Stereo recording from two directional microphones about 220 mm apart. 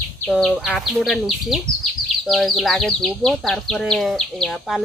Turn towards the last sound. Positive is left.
turn(degrees=0)  # may be behind; listen again after turning